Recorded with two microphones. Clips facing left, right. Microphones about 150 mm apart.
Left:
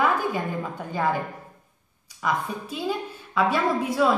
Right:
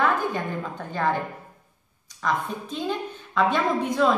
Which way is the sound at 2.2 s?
10° left (ahead or behind).